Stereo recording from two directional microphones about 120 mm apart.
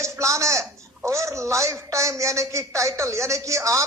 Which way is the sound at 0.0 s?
25° right (ahead or behind).